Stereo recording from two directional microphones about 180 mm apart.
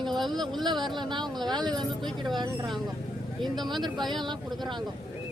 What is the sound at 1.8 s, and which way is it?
Speech, centre (ahead or behind).